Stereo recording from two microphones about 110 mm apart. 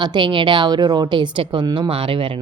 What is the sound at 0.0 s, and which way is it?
A woman's voice, 45° right (ahead or behind).